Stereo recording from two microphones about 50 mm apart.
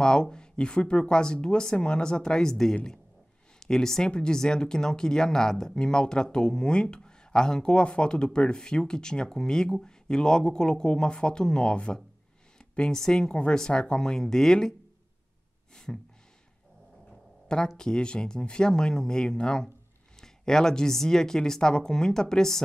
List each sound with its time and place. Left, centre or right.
0.0 s a woman's voice: centre
15.7 s gasp: centre
17.7 s speech: centre